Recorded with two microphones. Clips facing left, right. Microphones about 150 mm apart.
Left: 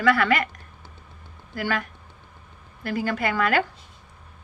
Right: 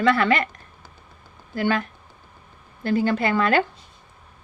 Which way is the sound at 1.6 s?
25° right (ahead or behind).